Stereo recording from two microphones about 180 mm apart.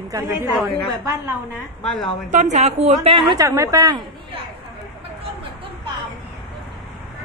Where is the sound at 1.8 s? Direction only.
5° left (ahead or behind).